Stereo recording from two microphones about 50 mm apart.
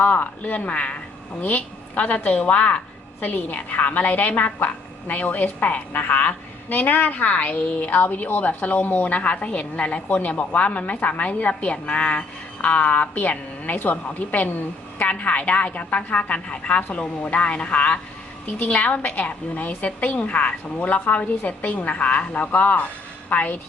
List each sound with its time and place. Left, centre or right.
0.0 s a woman's voice: left
3.2 s a woman's voice: left